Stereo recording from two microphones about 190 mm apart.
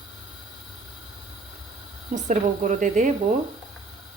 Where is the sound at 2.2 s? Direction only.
40° right (ahead or behind).